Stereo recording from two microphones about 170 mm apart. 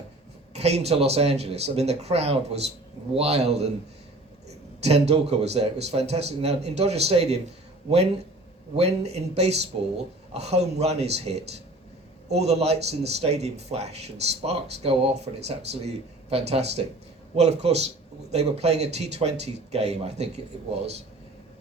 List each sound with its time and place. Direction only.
0.5 s speech: 40° right (ahead or behind)
4.4 s a sound: 40° right (ahead or behind)
5.0 s speech: 35° right (ahead or behind)
8.7 s speech: 40° right (ahead or behind)